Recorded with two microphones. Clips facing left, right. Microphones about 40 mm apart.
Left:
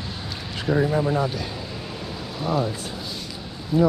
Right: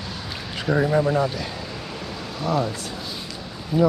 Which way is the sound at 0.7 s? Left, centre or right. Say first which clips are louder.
Even; right.